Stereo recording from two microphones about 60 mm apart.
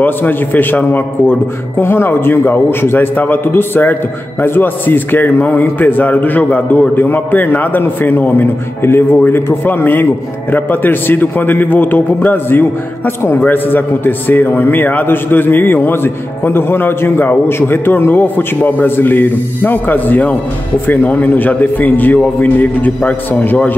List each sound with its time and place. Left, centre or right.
0.0 s a man's voice: left